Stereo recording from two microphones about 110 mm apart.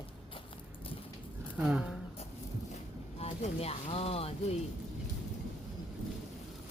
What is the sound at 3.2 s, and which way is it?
Speech, 70° left (ahead or behind).